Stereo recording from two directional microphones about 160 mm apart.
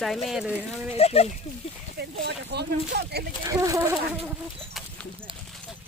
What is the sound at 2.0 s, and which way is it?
Speech, 90° right.